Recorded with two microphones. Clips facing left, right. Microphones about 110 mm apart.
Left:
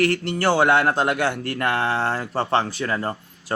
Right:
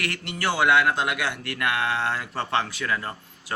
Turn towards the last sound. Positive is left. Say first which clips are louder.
# left 6 dB
turn(degrees=35)  # may be behind; listen again after turning